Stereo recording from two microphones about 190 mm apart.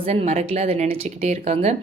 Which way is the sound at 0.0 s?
30° right (ahead or behind).